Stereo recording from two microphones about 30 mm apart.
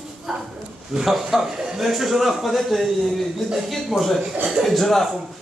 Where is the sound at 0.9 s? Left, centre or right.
Centre.